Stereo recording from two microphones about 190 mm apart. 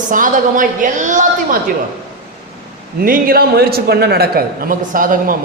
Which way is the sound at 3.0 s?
50° right (ahead or behind).